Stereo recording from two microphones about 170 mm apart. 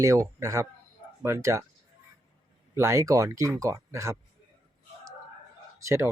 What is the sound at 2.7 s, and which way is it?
Speech, 15° right (ahead or behind).